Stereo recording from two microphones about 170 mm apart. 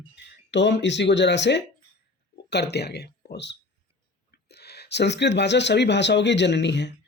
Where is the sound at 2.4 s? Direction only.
80° left.